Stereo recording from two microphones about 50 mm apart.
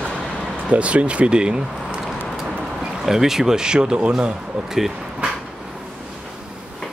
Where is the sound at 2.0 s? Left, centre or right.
Centre.